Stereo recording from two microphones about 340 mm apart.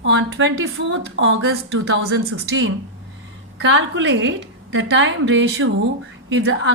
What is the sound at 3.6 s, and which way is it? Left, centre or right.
A woman's voice, right.